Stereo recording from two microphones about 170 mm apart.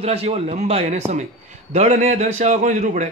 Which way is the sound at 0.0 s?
35° right (ahead or behind).